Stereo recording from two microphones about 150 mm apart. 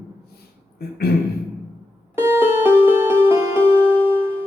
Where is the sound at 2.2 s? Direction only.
15° right (ahead or behind).